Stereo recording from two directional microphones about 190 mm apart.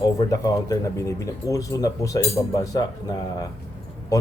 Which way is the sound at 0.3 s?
20° left (ahead or behind).